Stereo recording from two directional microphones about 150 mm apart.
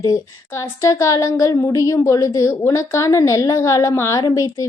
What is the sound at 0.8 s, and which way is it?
A woman's voice, 20° left (ahead or behind).